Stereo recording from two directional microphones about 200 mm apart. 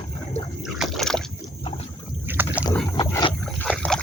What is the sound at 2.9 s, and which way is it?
Wild animals, 20° left (ahead or behind).